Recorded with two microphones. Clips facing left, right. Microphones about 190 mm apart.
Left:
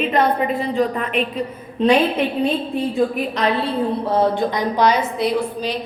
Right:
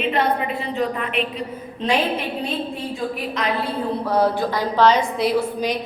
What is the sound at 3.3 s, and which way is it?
A woman's voice, 30° left (ahead or behind).